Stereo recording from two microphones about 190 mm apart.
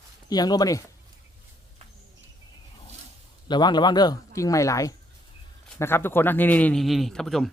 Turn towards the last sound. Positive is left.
turn(degrees=0)  # may be behind; listen again after turning